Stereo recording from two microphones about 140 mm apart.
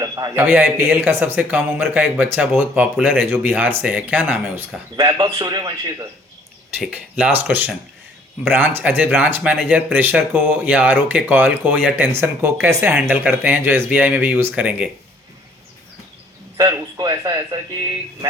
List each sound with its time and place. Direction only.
0.0 s a sound: 25° right (ahead or behind)
0.3 s speech: 15° right (ahead or behind)
4.9 s speech: 30° right (ahead or behind)
6.7 s speech: 10° right (ahead or behind)
16.6 s speech: 25° right (ahead or behind)